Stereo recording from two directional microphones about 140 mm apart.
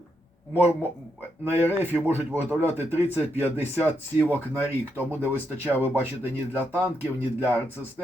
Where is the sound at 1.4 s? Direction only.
15° right (ahead or behind).